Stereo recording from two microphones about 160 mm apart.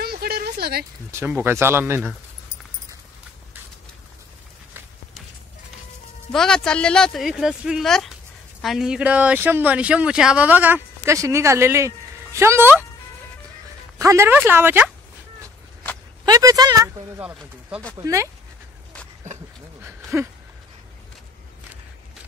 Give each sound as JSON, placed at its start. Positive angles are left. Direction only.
{"t": 0.0, "sound": "a sound", "side_deg": -75}
{"t": 1.1, "sound": "speech", "side_deg": -10}
{"t": 6.3, "sound": "speech", "side_deg": 5}
{"t": 13.9, "sound": "speech", "side_deg": -20}
{"t": 16.3, "sound": "speech", "side_deg": -20}
{"t": 17.4, "sound": "speech", "side_deg": -5}
{"t": 17.9, "sound": "speech", "side_deg": -20}
{"t": 19.8, "sound": "a sound", "side_deg": -15}